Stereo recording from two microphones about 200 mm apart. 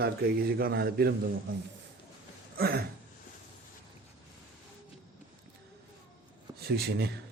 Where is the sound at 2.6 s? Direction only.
50° right (ahead or behind).